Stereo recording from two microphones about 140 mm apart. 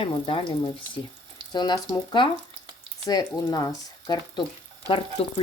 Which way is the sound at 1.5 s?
30° left (ahead or behind).